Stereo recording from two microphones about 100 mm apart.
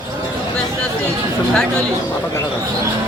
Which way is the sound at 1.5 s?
10° left (ahead or behind).